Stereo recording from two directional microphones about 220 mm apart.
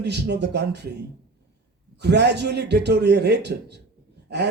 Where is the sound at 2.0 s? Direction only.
50° right (ahead or behind).